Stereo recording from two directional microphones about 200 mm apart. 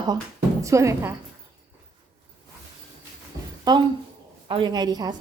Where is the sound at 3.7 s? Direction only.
20° right (ahead or behind).